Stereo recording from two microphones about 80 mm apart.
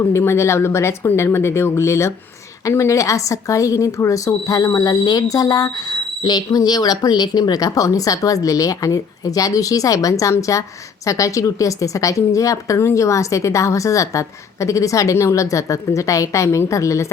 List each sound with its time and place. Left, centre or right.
0.1 s a woman's voice: left